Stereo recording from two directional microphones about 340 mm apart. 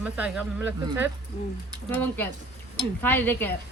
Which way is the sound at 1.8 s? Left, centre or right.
Centre.